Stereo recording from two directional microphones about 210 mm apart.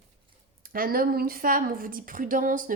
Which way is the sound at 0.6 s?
45° right (ahead or behind).